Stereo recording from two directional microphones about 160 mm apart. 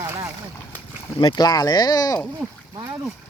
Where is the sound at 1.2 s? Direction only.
30° left (ahead or behind).